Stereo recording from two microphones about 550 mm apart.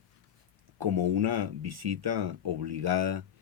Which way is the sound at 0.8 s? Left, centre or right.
Right.